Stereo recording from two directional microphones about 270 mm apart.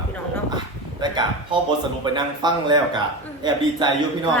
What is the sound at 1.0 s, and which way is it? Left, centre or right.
A man's voice, centre.